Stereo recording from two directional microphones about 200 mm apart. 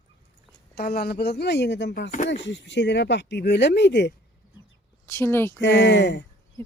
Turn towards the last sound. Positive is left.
turn(degrees=60)  # may be behind; listen again after turning